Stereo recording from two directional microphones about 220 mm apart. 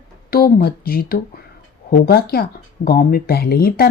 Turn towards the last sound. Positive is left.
turn(degrees=45)  # may be behind; listen again after turning